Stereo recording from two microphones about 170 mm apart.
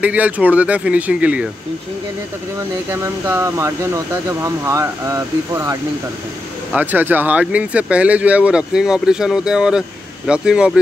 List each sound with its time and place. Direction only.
0.0 s speech: 10° right (ahead or behind)
2.9 s speech: 15° right (ahead or behind)